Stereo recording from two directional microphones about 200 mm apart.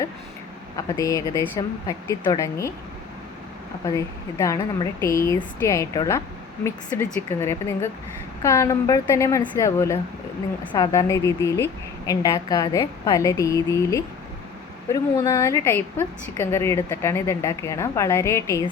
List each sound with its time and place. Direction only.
0.9 s a woman's voice: 15° left (ahead or behind)
3.8 s a woman's voice: 15° left (ahead or behind)